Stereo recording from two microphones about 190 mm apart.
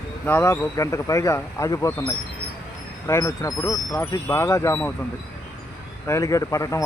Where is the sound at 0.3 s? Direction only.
10° left (ahead or behind).